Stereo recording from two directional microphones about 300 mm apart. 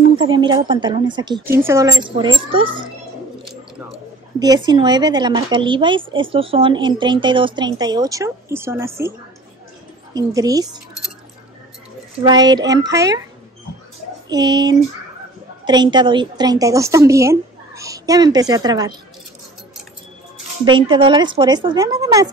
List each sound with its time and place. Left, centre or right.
0.2 s speech: centre
4.6 s speech: centre
10.1 s speech: centre
12.2 s speech: centre
14.3 s speech: centre
20.6 s speech: centre